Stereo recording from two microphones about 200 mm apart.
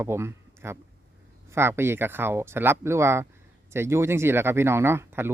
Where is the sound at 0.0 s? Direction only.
10° right (ahead or behind).